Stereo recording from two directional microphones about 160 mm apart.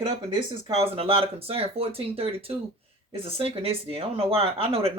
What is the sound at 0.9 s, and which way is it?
Speech, 35° right (ahead or behind).